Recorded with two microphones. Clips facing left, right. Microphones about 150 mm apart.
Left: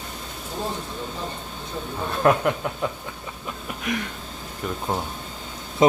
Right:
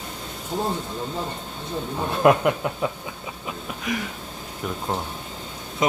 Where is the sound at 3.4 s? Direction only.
Centre (ahead or behind).